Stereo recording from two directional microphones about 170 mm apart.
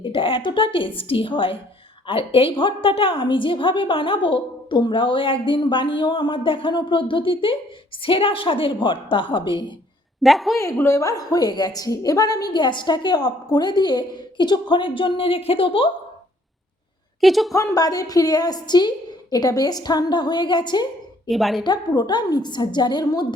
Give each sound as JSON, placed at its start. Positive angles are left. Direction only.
{"t": 0.0, "sound": "a woman's voice", "side_deg": 30}
{"t": 10.2, "sound": "a woman's voice", "side_deg": 0}
{"t": 10.6, "sound": "a woman's voice", "side_deg": 15}
{"t": 17.2, "sound": "a woman's voice", "side_deg": 0}
{"t": 17.5, "sound": "a woman's voice", "side_deg": 20}
{"t": 21.2, "sound": "a woman's voice", "side_deg": 0}
{"t": 21.6, "sound": "a woman's voice", "side_deg": 25}